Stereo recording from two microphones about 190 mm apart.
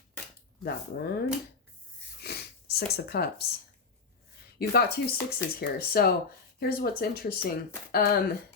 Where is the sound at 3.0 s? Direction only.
55° left (ahead or behind).